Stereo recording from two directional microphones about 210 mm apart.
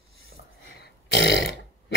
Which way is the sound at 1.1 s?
60° left (ahead or behind).